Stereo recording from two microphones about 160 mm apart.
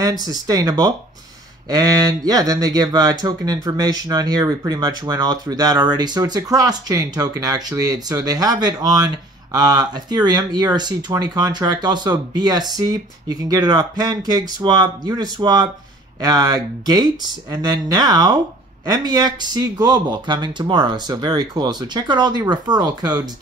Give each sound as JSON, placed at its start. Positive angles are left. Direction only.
{"t": 0.3, "sound": "speech", "side_deg": -25}